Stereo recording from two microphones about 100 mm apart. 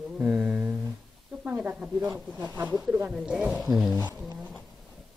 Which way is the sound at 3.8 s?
20° right (ahead or behind).